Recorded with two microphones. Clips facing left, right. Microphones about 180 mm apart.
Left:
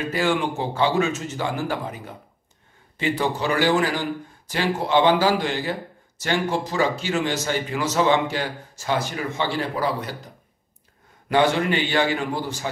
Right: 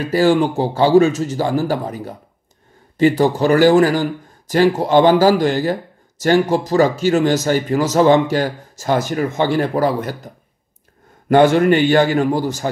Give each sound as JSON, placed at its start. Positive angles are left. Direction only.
{"t": 0.0, "sound": "a man's voice", "side_deg": -35}